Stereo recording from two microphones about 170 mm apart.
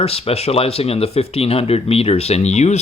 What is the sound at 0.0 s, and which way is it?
Speech, 35° left (ahead or behind).